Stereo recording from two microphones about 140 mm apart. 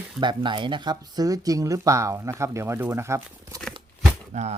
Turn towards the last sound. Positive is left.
turn(degrees=-55)  # may be behind; listen again after turning